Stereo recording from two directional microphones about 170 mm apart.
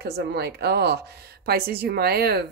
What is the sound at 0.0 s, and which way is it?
A woman's voice, 75° right (ahead or behind).